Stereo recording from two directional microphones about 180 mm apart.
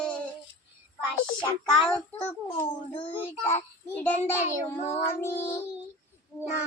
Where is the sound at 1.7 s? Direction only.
5° left (ahead or behind).